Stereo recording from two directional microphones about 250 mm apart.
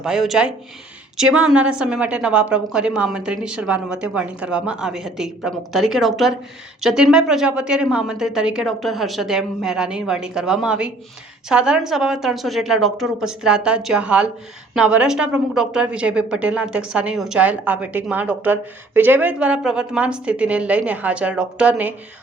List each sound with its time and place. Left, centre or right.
0.0 s a woman's voice: centre